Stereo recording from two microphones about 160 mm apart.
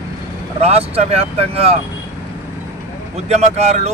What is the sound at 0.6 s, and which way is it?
Speech, 40° right (ahead or behind).